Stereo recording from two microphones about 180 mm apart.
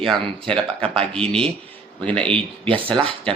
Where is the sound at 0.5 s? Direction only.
5° left (ahead or behind).